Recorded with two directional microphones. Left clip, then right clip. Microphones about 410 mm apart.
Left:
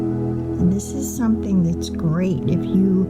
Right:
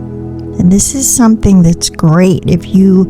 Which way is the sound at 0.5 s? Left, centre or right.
Right.